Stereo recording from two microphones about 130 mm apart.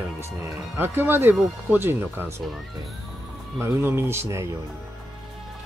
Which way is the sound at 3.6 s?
20° right (ahead or behind).